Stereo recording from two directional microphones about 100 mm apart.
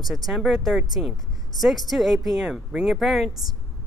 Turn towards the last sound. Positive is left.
turn(degrees=0)  # may be behind; listen again after turning